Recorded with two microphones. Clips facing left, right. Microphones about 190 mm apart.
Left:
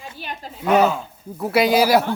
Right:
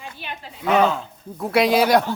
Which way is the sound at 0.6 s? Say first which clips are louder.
Left 2 dB; 10° left (ahead or behind).